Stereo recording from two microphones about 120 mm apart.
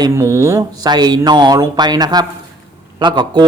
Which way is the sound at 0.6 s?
35° right (ahead or behind).